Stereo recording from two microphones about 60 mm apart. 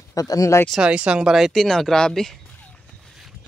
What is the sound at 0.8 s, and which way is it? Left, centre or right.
Speech, centre.